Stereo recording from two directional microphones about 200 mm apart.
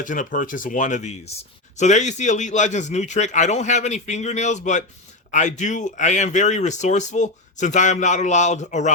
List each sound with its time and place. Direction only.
0.0 s speech: 40° left (ahead or behind)